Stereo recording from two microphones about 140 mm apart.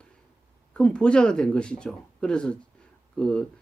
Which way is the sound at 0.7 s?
5° left (ahead or behind).